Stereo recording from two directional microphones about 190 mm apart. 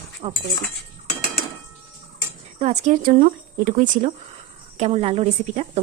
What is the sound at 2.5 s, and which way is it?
Speech, 40° right (ahead or behind).